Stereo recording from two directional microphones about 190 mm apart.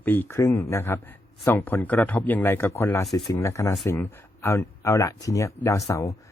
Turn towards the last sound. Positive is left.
turn(degrees=15)  # may be behind; listen again after turning